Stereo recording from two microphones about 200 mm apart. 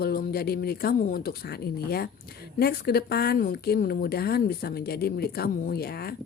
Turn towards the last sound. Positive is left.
turn(degrees=50)  # may be behind; listen again after turning